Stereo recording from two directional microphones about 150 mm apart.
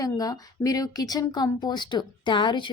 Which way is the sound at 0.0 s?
25° left (ahead or behind).